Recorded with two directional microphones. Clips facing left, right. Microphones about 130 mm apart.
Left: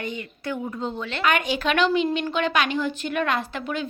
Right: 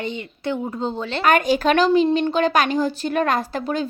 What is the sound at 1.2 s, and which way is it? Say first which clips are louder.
A woman's voice: right 6 dB; 45° right (ahead or behind).